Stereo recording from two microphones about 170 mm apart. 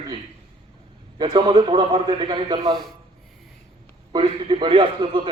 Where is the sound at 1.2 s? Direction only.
30° right (ahead or behind).